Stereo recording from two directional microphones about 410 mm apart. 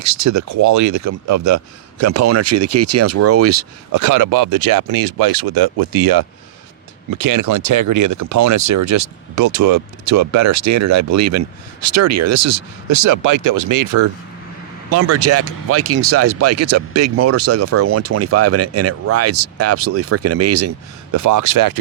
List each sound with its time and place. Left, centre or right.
0.0 s speech: right
4.0 s speech: right